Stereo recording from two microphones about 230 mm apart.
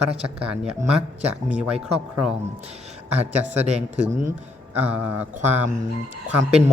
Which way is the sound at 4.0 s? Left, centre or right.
Right.